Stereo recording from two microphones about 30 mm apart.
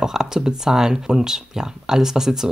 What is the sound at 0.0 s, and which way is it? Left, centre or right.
Speech, centre.